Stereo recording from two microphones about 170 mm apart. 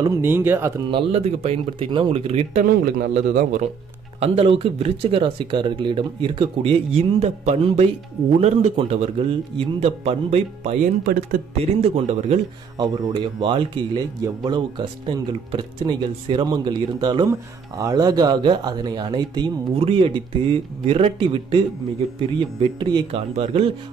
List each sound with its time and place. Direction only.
0.0 s speech: 15° right (ahead or behind)
0.8 s speech: 30° right (ahead or behind)
2.8 s a man's voice: 55° right (ahead or behind)
4.2 s speech: 35° right (ahead or behind)
12.7 s speech: 25° right (ahead or behind)